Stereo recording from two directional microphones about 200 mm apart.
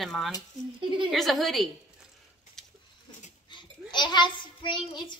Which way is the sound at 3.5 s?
20° left (ahead or behind).